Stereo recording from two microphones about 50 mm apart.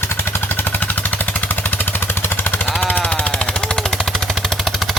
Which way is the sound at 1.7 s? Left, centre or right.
Left.